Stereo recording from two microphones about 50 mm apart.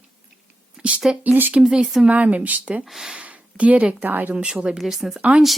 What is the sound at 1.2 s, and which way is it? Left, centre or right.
Speech, right.